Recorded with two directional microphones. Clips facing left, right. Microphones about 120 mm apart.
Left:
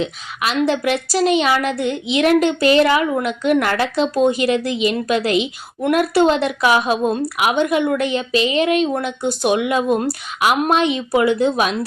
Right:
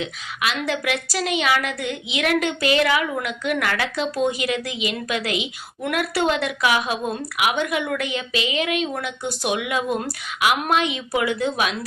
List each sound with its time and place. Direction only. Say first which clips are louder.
0.0 s a woman's voice: left 4 dB; 35° left (ahead or behind)